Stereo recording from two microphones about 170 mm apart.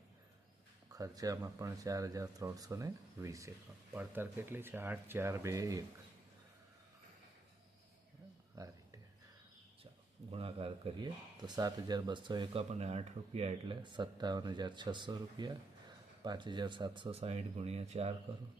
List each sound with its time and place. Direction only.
0.9 s speech: 20° right (ahead or behind)
8.5 s a sound: 20° right (ahead or behind)
10.3 s speech: 35° right (ahead or behind)